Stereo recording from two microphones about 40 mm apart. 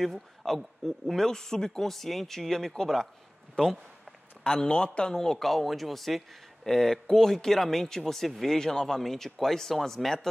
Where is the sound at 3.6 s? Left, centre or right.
Left.